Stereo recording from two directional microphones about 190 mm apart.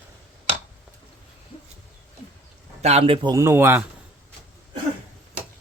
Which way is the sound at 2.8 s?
35° right (ahead or behind).